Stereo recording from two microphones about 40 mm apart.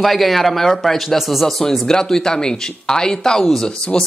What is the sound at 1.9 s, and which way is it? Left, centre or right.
Speech, centre.